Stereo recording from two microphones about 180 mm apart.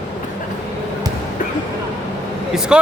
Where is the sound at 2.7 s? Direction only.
5° right (ahead or behind).